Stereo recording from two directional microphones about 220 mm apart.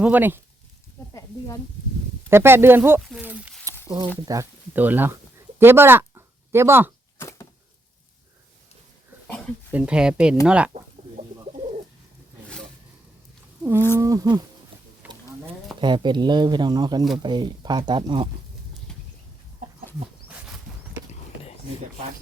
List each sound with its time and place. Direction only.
0.0 s speech: 10° right (ahead or behind)
2.3 s a sound: 10° right (ahead or behind)
3.8 s speech: 15° right (ahead or behind)
7.2 s a sound: 15° left (ahead or behind)
9.7 s speech: 5° right (ahead or behind)
13.6 s speech: 10° right (ahead or behind)
15.0 s a sound: 10° right (ahead or behind)
15.8 s speech: 20° right (ahead or behind)
19.6 s chicken: 40° right (ahead or behind)